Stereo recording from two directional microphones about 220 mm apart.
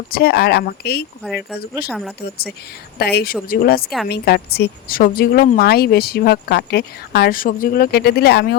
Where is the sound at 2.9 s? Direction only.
45° left (ahead or behind).